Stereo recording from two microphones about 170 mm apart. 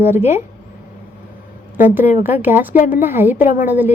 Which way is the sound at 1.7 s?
10° right (ahead or behind).